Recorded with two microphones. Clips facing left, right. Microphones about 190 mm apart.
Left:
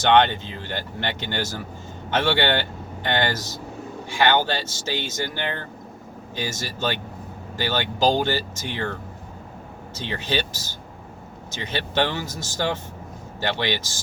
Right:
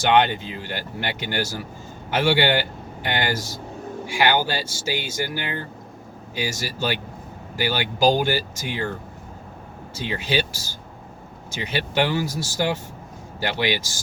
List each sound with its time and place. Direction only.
0.0 s a man's voice: 10° right (ahead or behind)
9.9 s speech: 10° right (ahead or behind)